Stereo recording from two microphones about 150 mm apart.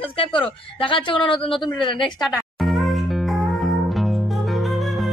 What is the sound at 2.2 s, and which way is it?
Music, centre (ahead or behind).